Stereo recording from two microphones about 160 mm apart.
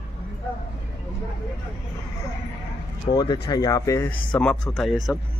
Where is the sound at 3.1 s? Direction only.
25° left (ahead or behind).